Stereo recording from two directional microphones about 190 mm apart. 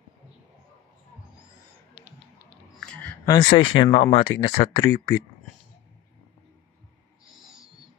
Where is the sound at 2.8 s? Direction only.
5° left (ahead or behind).